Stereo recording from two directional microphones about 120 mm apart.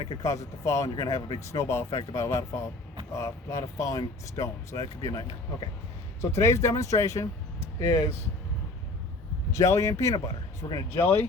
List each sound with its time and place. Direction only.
0.0 s speech: 30° left (ahead or behind)
9.6 s speech: 25° left (ahead or behind)